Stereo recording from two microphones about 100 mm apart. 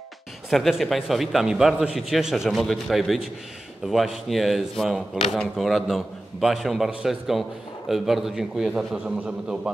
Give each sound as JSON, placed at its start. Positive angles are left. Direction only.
{"t": 0.5, "sound": "a man's voice", "side_deg": 0}